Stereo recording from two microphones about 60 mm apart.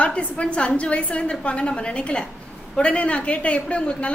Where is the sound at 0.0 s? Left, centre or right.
Left.